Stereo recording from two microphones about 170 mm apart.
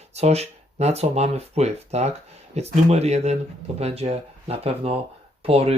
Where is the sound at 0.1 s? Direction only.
40° right (ahead or behind).